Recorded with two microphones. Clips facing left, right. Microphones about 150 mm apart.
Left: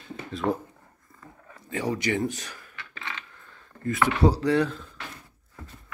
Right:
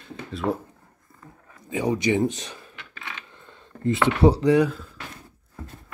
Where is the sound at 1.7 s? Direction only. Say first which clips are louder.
Right 4 dB; 15° right (ahead or behind).